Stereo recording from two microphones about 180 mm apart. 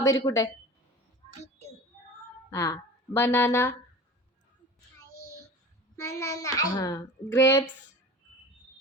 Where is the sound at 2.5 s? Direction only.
20° left (ahead or behind).